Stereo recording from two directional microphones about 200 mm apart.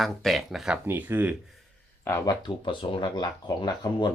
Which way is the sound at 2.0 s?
15° left (ahead or behind).